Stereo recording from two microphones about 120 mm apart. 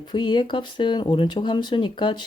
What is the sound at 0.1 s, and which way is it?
Speech, 40° left (ahead or behind).